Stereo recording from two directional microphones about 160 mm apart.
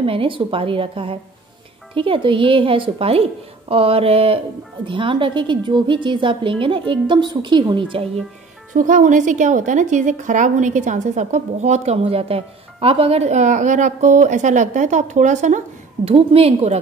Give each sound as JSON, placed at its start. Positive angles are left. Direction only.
{"t": 0.0, "sound": "a woman's voice", "side_deg": -35}
{"t": 8.7, "sound": "a woman's voice", "side_deg": -55}
{"t": 16.1, "sound": "a woman's voice", "side_deg": -40}